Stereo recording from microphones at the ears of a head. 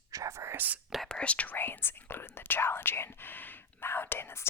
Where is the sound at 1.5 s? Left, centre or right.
Left.